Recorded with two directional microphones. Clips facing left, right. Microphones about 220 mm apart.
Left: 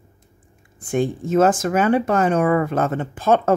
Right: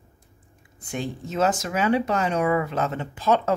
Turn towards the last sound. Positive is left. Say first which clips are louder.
# left 5 dB
turn(degrees=50)  # may be behind; listen again after turning